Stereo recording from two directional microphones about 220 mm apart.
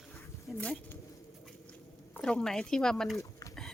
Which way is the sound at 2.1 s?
5° left (ahead or behind).